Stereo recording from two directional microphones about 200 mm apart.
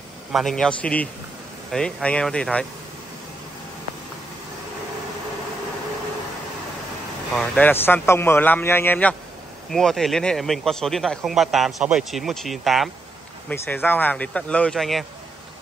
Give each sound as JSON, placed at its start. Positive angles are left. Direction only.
{"t": 0.3, "sound": "speech", "side_deg": 0}
{"t": 7.3, "sound": "a man's voice", "side_deg": 5}